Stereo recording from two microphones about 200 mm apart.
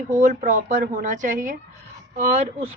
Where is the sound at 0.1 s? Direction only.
40° right (ahead or behind).